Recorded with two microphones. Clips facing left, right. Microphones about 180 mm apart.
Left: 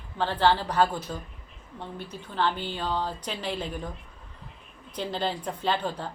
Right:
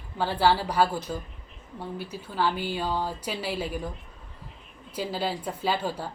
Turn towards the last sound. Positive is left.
turn(degrees=-10)  # may be behind; listen again after turning